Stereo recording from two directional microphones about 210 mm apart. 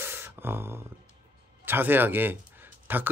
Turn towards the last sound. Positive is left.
turn(degrees=-10)  # may be behind; listen again after turning